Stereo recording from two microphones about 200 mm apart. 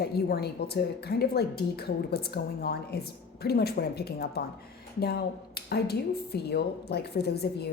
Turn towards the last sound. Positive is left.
turn(degrees=55)  # may be behind; listen again after turning